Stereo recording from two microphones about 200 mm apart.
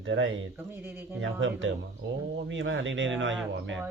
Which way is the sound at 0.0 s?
70° right (ahead or behind).